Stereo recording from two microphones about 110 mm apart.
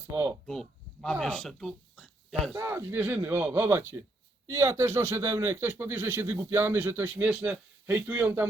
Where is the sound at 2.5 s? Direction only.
20° right (ahead or behind).